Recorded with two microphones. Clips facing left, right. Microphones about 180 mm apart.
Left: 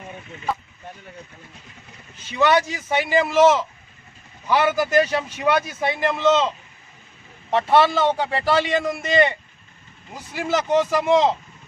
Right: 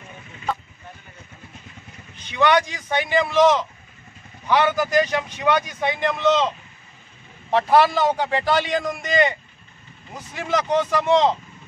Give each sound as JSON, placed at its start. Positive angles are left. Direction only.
{"t": 2.1, "sound": "a man's voice", "side_deg": 5}
{"t": 7.5, "sound": "a man's voice", "side_deg": 0}